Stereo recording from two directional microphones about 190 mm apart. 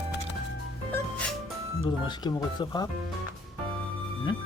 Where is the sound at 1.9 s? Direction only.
25° left (ahead or behind).